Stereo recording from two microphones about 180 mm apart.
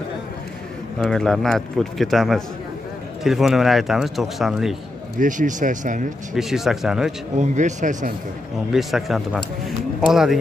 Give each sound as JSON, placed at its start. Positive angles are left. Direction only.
{"t": 0.9, "sound": "a man's voice", "side_deg": 5}
{"t": 5.2, "sound": "speech", "side_deg": -45}
{"t": 6.3, "sound": "a man's voice", "side_deg": 0}
{"t": 7.3, "sound": "speech", "side_deg": -40}
{"t": 8.7, "sound": "a man's voice", "side_deg": 0}
{"t": 9.7, "sound": "music", "side_deg": 0}